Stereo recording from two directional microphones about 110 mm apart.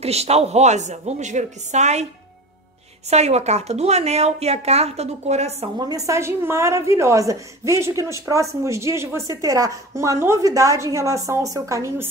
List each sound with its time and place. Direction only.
0.0 s a woman's voice: 70° right (ahead or behind); by 2.0 s 90° right
3.1 s speech: 80° right
5.8 s a woman's voice: 35° right (ahead or behind)